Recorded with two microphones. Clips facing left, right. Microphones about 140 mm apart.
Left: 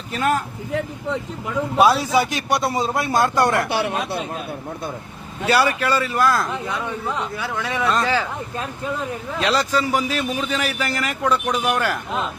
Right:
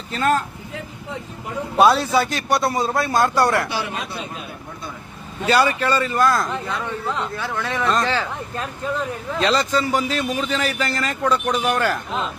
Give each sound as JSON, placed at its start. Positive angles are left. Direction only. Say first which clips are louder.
{"t": 0.1, "sound": "a man's voice", "louder": "right 1 dB", "side_deg": 10}
{"t": 1.8, "sound": "a man's voice", "louder": "right 1 dB", "side_deg": 10}
{"t": 3.7, "sound": "speech", "louder": "left 5 dB", "side_deg": 60}
{"t": 5.5, "sound": "a man's voice", "louder": "right 1 dB", "side_deg": 10}
{"t": 6.5, "sound": "a man's voice", "louder": "even", "side_deg": 15}